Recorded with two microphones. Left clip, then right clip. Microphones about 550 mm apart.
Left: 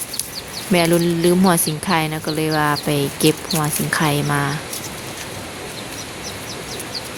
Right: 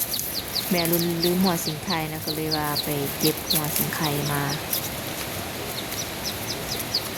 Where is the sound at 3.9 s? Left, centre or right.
Right.